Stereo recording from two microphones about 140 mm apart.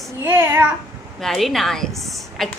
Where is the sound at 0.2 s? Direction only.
20° right (ahead or behind).